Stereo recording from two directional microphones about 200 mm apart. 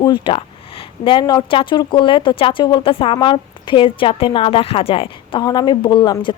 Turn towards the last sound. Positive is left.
turn(degrees=25)  # may be behind; listen again after turning